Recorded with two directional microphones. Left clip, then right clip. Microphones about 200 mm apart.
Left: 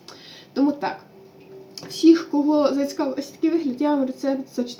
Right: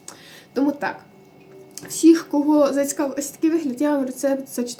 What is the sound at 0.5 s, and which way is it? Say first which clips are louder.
Speech: even; 45° right (ahead or behind).